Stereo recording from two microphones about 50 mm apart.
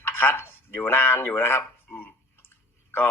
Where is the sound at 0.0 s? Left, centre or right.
Left.